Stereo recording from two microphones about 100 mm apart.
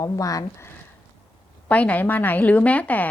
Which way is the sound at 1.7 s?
15° left (ahead or behind).